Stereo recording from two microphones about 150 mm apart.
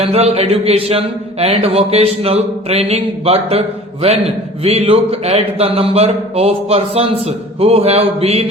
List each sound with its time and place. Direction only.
0.0 s speech: 40° right (ahead or behind)